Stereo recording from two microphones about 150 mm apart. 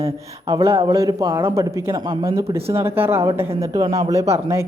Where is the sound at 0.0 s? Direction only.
35° right (ahead or behind).